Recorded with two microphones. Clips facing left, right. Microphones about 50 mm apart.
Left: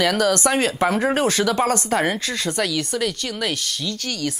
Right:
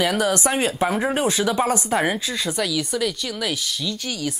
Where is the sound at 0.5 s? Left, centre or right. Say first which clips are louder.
Left 2 dB; left.